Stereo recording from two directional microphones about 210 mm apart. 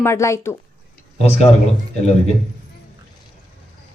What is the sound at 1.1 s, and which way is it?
Speech, 30° left (ahead or behind).